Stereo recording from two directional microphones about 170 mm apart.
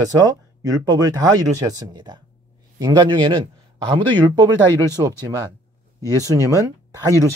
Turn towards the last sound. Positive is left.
turn(degrees=-20)  # may be behind; listen again after turning